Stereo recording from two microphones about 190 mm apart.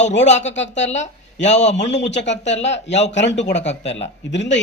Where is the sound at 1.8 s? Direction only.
70° left (ahead or behind).